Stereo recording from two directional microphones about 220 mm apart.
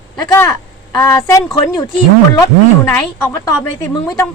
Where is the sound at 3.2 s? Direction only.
10° left (ahead or behind).